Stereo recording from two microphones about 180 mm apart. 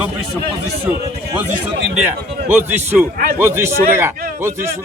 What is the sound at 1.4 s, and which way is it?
A man's voice, 10° right (ahead or behind).